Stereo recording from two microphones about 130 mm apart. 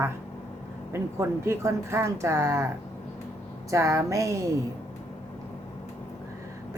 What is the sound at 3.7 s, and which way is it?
Speech, 20° right (ahead or behind).